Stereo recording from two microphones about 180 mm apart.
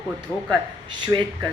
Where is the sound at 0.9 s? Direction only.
25° right (ahead or behind).